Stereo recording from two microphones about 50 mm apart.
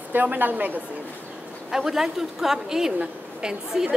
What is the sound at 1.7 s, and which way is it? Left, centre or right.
A woman's voice, centre.